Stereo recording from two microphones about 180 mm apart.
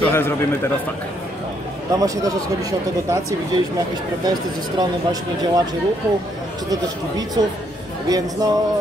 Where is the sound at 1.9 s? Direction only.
20° right (ahead or behind).